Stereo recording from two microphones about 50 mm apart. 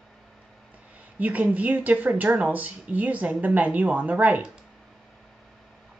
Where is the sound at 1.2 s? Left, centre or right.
Right.